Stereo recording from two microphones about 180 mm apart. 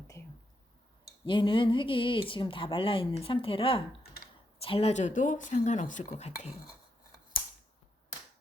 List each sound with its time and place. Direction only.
1.2 s speech: 25° left (ahead or behind)